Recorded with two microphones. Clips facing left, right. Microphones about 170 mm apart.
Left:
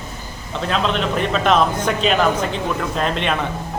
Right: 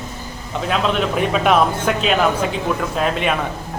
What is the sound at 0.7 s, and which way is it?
A man's voice, 5° right (ahead or behind).